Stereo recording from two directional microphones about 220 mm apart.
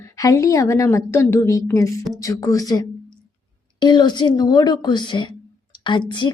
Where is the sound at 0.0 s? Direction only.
15° left (ahead or behind).